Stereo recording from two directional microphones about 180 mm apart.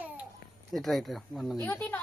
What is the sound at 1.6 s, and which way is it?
Speech, 15° left (ahead or behind).